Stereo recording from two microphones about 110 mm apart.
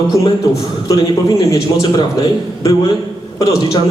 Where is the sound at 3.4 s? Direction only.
30° left (ahead or behind).